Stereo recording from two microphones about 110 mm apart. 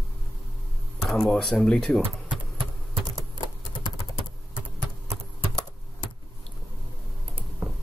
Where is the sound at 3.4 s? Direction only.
35° left (ahead or behind).